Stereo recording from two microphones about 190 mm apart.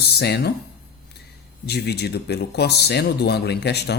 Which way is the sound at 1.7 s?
60° left (ahead or behind).